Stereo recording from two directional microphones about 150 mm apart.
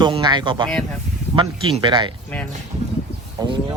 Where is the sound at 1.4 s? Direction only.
35° right (ahead or behind).